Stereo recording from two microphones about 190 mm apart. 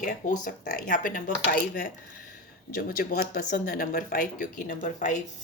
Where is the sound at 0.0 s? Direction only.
40° left (ahead or behind).